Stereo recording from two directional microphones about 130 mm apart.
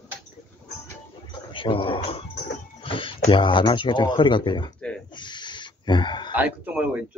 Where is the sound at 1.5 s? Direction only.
45° left (ahead or behind).